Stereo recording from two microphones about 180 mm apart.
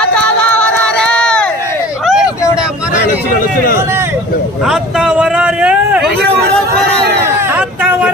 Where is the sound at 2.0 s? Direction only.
Centre (ahead or behind).